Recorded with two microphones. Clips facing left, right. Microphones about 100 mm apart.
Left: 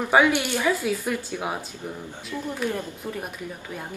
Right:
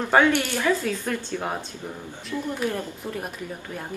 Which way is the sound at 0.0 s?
10° left (ahead or behind).